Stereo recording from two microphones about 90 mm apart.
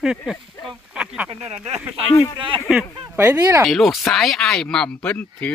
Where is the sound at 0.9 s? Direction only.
10° right (ahead or behind).